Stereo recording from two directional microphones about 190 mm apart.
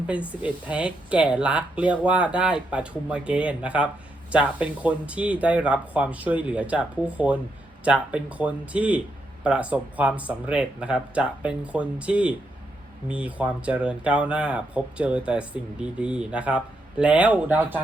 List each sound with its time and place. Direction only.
0.1 s speech: 5° right (ahead or behind)